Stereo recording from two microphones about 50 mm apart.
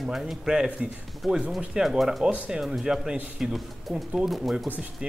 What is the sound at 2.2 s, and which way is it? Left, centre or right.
Speech, right.